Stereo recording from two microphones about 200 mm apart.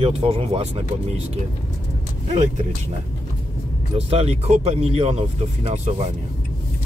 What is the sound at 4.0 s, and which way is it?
Speech, 30° right (ahead or behind).